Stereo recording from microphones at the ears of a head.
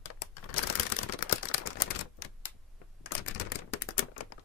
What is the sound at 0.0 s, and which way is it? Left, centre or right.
Camera, left.